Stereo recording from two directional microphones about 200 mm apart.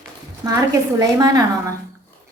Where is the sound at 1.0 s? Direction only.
20° right (ahead or behind).